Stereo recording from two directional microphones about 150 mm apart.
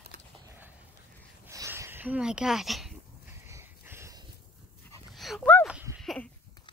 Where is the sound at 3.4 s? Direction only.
15° right (ahead or behind).